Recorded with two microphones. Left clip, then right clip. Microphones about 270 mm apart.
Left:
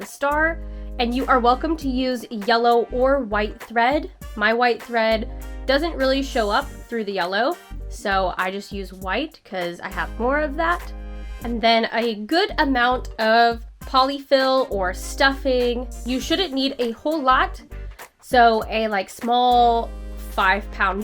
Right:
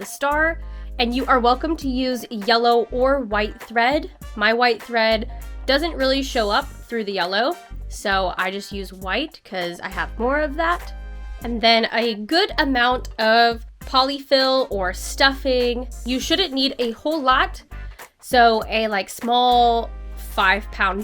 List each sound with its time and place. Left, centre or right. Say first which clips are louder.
0.0 s music: right 1 dB; centre
0.9 s speech: right 1 dB; centre
2.6 s speech: even; right
3.3 s speech: right 1 dB; centre
8.4 s speech: right 1 dB; centre